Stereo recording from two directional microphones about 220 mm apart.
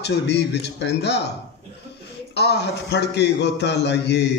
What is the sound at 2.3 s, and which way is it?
A man's voice, 50° left (ahead or behind).